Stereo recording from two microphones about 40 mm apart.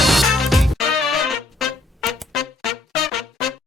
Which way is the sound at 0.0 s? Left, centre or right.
Centre.